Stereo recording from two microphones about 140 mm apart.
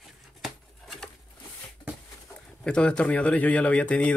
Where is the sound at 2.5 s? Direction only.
5° left (ahead or behind).